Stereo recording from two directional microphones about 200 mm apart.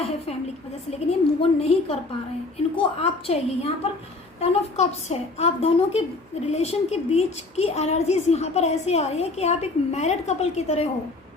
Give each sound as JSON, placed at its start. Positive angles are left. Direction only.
{"t": 0.0, "sound": "a woman's voice", "side_deg": 30}